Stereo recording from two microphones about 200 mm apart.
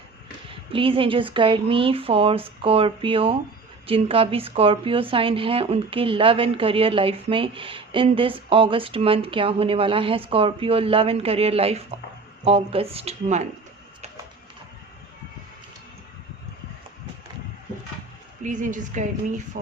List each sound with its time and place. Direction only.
0.7 s speech: 25° right (ahead or behind)
18.4 s speech: 40° right (ahead or behind)